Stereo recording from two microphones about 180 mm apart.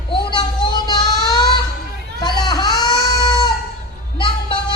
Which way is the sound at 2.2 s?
25° left (ahead or behind).